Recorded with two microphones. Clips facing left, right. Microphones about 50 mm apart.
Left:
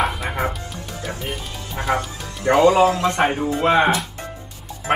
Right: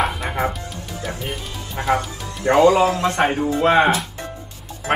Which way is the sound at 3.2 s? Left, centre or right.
Centre.